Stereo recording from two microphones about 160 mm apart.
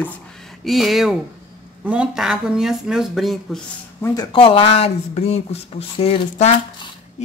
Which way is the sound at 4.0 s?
25° left (ahead or behind).